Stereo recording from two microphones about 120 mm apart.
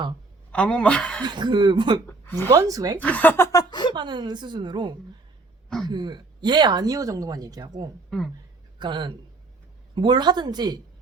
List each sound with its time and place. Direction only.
0.5 s speech: 10° left (ahead or behind)
1.2 s speech: 40° right (ahead or behind)
2.0 s a woman's voice: 15° left (ahead or behind)
2.5 s speech: 30° right (ahead or behind)
3.0 s speech: 15° left (ahead or behind); by 3.9 s 40° left (ahead or behind)
3.9 s speech: 40° right (ahead or behind)
8.1 s speech: 5° left (ahead or behind)
8.8 s speech: 40° right (ahead or behind)